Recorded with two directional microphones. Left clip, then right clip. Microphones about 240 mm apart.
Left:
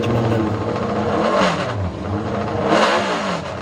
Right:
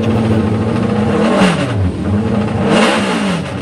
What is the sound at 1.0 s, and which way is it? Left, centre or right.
Vehicle, left.